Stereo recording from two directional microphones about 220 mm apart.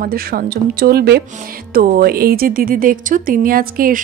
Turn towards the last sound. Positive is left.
turn(degrees=-40)  # may be behind; listen again after turning